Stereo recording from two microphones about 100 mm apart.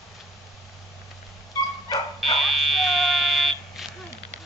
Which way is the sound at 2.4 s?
Centre (ahead or behind).